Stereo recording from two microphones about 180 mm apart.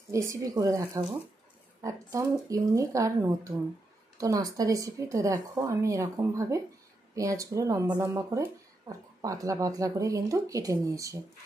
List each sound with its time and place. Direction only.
0.1 s speech: 15° right (ahead or behind)